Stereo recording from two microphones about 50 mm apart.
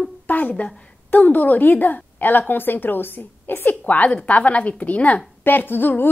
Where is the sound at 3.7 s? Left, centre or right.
Left.